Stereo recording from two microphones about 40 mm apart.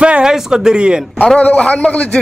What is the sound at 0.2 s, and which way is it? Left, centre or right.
Speech, centre.